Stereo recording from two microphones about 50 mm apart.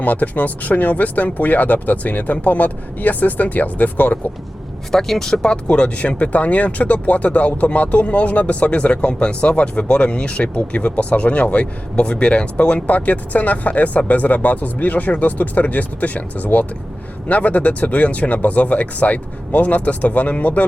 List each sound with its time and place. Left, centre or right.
0.0 s speech: left
4.9 s speech: centre; by 20.7 s left